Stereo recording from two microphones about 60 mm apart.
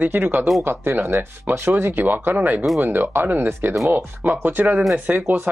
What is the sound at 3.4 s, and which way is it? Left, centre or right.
Speech, right.